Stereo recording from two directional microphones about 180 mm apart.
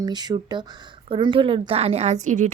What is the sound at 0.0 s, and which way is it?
A woman's voice, 20° right (ahead or behind).